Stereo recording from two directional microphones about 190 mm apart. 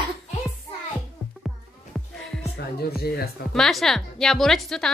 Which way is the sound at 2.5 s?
55° left (ahead or behind).